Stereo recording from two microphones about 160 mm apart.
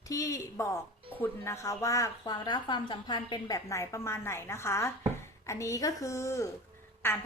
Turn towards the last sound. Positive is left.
turn(degrees=15)  # may be behind; listen again after turning